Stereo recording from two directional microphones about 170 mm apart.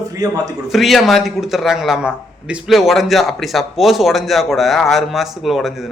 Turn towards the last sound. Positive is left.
turn(degrees=0)  # may be behind; listen again after turning